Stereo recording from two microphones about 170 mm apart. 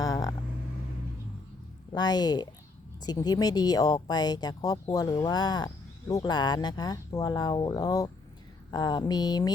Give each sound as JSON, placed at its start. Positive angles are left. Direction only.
{"t": 0.0, "sound": "vehicle", "side_deg": 20}
{"t": 1.9, "sound": "speech", "side_deg": 25}